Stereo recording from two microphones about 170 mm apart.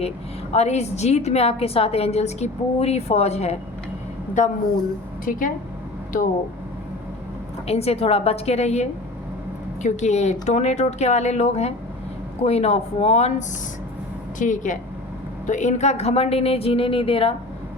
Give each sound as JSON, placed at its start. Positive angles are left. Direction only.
{"t": 0.5, "sound": "a woman's voice", "side_deg": 40}
{"t": 7.7, "sound": "a woman's voice", "side_deg": 35}
{"t": 14.3, "sound": "a woman's voice", "side_deg": 45}